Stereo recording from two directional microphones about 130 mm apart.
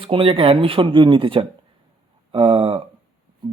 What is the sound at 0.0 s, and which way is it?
Speech, 45° right (ahead or behind).